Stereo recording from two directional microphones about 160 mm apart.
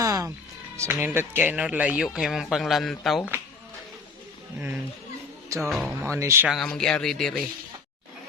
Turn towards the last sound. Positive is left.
turn(degrees=5)  # may be behind; listen again after turning